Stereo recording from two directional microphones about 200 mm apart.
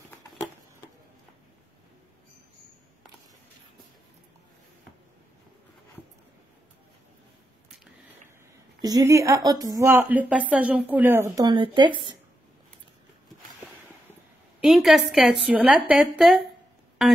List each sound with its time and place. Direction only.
0.3 s a sound: 10° left (ahead or behind)
8.8 s a woman's voice: 15° right (ahead or behind)
14.6 s a woman's voice: centre (ahead or behind)